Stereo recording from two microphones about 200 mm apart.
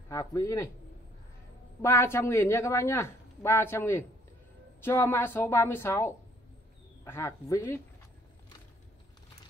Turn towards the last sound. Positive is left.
turn(degrees=15)  # may be behind; listen again after turning